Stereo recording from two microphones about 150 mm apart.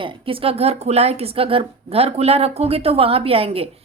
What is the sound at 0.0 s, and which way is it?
A woman's voice, 35° right (ahead or behind).